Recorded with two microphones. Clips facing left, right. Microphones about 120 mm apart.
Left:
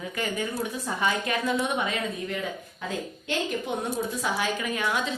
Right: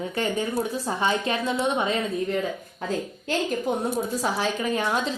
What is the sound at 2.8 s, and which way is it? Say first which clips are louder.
A woman's voice: right 5 dB; 40° right (ahead or behind).